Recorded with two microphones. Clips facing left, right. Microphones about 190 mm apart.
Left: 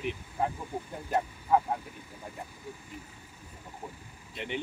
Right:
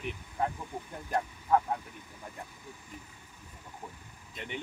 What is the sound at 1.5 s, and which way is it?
Speech, 10° left (ahead or behind).